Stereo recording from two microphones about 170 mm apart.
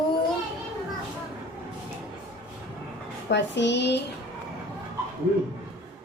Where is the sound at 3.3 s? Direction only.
90° left.